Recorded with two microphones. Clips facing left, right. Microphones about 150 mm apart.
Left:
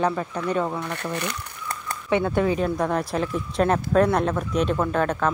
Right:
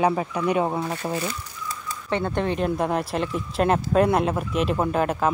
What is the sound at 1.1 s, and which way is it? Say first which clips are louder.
Crumpling: right 1 dB; 65° left (ahead or behind).